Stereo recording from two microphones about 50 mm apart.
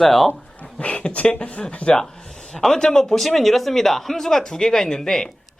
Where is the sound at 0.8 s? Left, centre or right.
Left.